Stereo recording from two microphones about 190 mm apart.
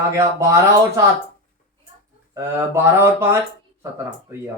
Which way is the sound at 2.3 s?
15° right (ahead or behind).